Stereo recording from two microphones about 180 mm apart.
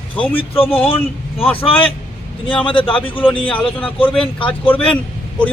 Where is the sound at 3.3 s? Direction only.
30° left (ahead or behind).